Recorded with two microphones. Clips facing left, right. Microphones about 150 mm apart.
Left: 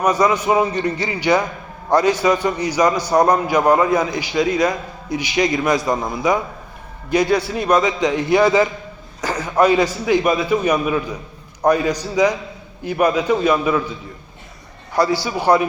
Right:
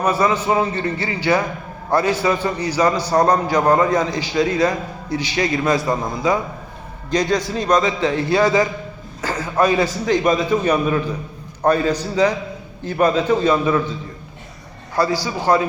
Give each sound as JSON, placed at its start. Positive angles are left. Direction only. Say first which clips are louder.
{"t": 0.0, "sound": "a man's voice", "louder": "left 1 dB", "side_deg": 15}
{"t": 15.0, "sound": "a man's voice", "louder": "left 2 dB", "side_deg": 15}